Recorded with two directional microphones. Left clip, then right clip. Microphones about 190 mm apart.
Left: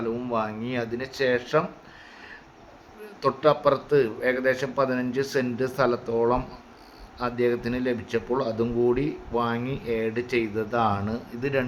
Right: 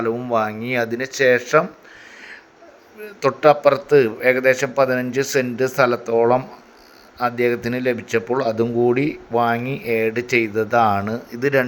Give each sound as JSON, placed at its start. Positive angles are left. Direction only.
{"t": 0.0, "sound": "speech", "side_deg": -20}
{"t": 3.2, "sound": "speech", "side_deg": -25}